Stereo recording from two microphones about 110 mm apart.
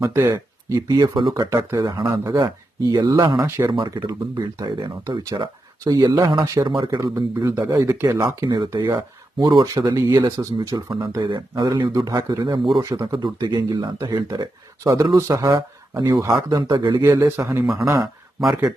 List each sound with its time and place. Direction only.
0.1 s speech: 20° right (ahead or behind)
0.8 s speech: 35° right (ahead or behind)
1.5 s speech: 30° right (ahead or behind)
2.0 s speech: 40° right (ahead or behind)
8.2 s speech: 40° right (ahead or behind)
11.2 s speech: 45° right (ahead or behind)
11.9 s speech: 30° right (ahead or behind)
16.7 s speech: 45° right (ahead or behind)
17.0 s speech: 20° right (ahead or behind)